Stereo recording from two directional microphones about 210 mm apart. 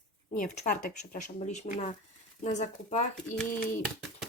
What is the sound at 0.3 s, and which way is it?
Speech, 35° left (ahead or behind).